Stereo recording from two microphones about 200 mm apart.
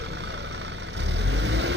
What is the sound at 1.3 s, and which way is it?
Vehicle, 60° right (ahead or behind).